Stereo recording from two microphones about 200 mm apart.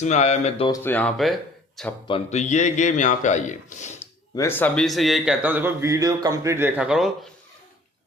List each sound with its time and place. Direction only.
0.0 s a man's voice: 35° left (ahead or behind)
0.7 s speech: 10° left (ahead or behind)
2.0 s a man's voice: 30° left (ahead or behind)
4.4 s a man's voice: 10° left (ahead or behind)